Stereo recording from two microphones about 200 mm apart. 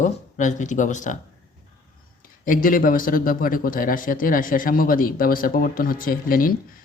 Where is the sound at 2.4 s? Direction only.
45° left (ahead or behind).